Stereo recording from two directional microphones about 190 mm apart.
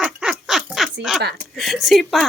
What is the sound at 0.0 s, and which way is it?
Duck, 5° right (ahead or behind).